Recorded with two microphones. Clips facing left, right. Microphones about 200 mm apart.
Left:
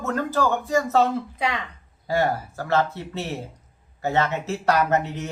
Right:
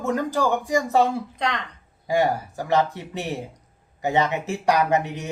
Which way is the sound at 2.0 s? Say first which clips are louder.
Right 1 dB; 15° right (ahead or behind).